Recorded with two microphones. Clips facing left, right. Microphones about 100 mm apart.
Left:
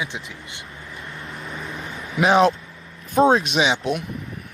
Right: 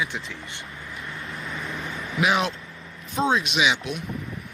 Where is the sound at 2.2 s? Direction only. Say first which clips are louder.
Left 7 dB; 35° left (ahead or behind).